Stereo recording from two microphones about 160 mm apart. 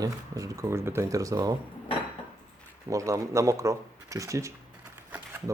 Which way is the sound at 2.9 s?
20° right (ahead or behind).